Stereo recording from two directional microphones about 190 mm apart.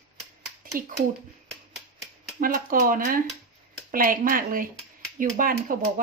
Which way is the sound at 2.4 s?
45° right (ahead or behind).